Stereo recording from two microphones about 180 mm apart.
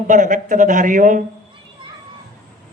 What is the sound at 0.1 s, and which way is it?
A man's voice, 45° right (ahead or behind).